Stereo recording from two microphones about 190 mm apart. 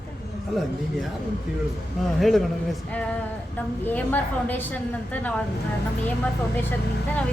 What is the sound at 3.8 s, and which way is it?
A woman's voice, 10° left (ahead or behind).